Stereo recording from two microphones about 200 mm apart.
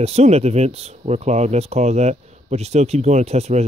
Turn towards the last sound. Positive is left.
turn(degrees=-30)  # may be behind; listen again after turning